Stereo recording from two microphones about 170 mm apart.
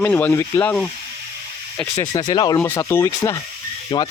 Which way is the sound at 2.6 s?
15° left (ahead or behind).